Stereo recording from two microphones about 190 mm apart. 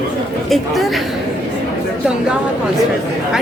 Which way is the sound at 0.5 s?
Centre (ahead or behind).